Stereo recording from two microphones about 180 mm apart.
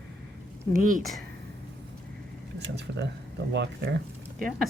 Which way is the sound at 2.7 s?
75° right (ahead or behind).